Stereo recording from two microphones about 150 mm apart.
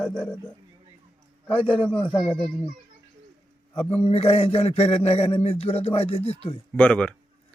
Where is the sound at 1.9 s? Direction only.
5° left (ahead or behind).